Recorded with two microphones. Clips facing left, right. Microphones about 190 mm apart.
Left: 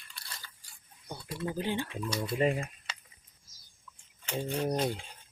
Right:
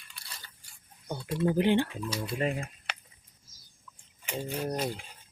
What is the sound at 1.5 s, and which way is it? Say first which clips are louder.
Speech: right 9 dB; 70° right (ahead or behind).